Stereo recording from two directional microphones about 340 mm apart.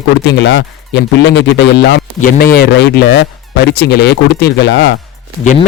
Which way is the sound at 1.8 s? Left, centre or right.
Left.